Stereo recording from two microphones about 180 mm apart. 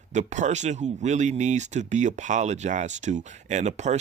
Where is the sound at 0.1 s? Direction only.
40° right (ahead or behind).